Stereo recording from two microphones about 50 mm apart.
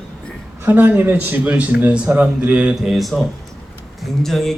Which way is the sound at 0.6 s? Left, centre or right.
Right.